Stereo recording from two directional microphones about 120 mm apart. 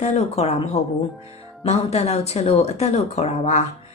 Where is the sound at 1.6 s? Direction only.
60° left (ahead or behind).